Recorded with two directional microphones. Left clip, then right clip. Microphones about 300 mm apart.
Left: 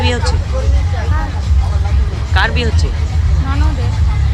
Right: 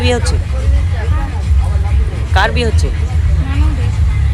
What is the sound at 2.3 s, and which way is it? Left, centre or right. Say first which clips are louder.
Speech: right 2 dB; centre.